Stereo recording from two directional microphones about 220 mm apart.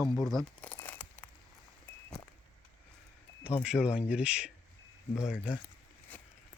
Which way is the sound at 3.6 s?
5° right (ahead or behind).